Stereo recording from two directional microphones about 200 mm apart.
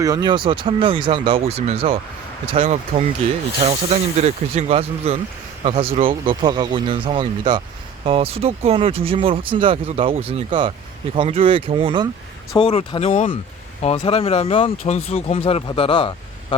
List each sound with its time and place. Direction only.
0.0 s speech: 20° right (ahead or behind)
12.5 s speech: 25° left (ahead or behind)